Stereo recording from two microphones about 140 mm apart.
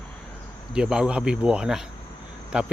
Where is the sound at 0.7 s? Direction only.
5° right (ahead or behind).